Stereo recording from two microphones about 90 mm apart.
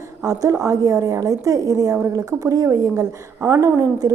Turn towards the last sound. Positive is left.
turn(degrees=-40)  # may be behind; listen again after turning